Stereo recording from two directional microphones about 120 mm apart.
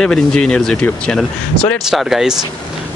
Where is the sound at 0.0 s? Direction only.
5° left (ahead or behind).